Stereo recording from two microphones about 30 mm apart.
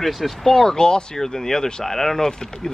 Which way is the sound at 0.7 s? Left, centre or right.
Left.